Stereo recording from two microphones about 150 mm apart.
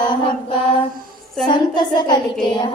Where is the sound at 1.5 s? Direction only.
30° left (ahead or behind).